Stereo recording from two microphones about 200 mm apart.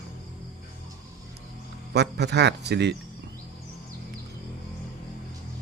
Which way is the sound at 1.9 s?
55° right (ahead or behind).